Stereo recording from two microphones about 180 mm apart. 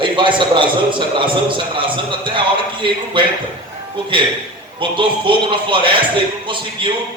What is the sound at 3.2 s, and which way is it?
Speech, 25° right (ahead or behind).